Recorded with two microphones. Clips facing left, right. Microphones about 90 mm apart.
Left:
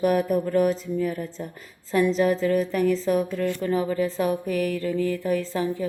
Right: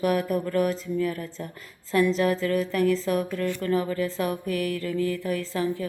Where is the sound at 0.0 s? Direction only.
20° left (ahead or behind).